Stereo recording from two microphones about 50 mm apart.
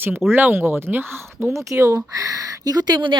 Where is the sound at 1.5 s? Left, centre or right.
Right.